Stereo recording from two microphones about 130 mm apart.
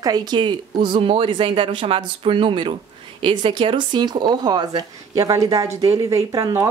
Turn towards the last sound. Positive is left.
turn(degrees=-25)  # may be behind; listen again after turning